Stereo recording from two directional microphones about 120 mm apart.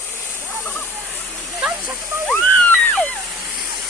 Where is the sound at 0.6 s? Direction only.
20° left (ahead or behind).